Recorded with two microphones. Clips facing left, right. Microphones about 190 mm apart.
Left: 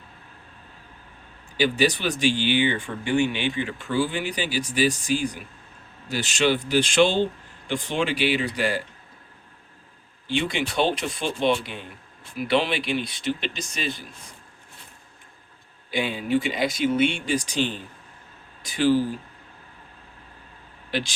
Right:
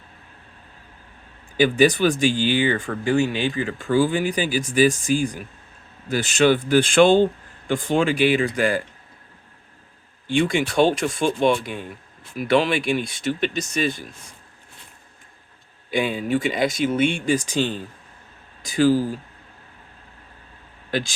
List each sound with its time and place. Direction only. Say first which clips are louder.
1.5 s speech: right 5 dB; 50° right (ahead or behind)
10.2 s speech: right 5 dB; 45° right (ahead or behind)
15.9 s speech: right 2 dB; 50° right (ahead or behind)